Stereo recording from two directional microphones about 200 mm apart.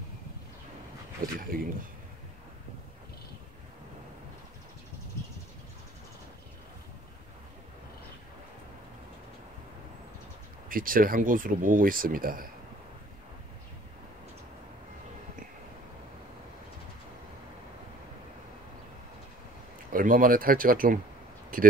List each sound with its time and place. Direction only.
1.2 s speech: 45° right (ahead or behind)
10.7 s speech: 45° right (ahead or behind)
19.9 s speech: 45° right (ahead or behind)